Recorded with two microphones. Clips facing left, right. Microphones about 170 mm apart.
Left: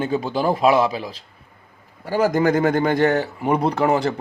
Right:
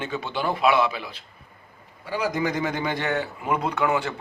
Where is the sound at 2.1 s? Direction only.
45° left (ahead or behind).